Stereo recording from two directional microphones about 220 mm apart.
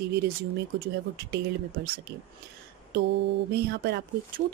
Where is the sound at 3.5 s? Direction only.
45° right (ahead or behind).